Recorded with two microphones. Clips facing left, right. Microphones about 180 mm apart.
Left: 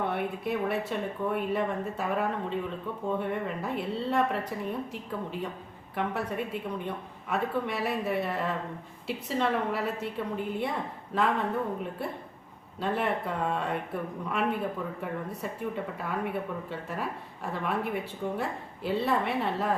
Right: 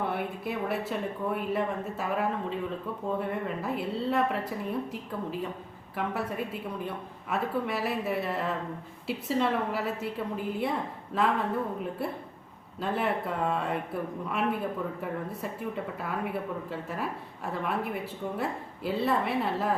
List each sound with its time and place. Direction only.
0.0 s speech: centre (ahead or behind)
12.8 s speech: centre (ahead or behind)